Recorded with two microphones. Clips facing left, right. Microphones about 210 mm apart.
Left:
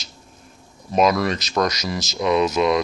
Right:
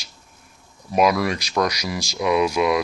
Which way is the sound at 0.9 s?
10° right (ahead or behind).